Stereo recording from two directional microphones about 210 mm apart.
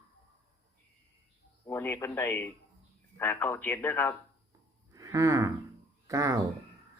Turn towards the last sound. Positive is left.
turn(degrees=-15)  # may be behind; listen again after turning